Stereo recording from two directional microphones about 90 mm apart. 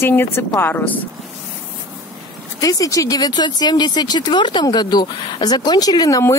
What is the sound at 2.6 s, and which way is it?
Speech, 40° left (ahead or behind).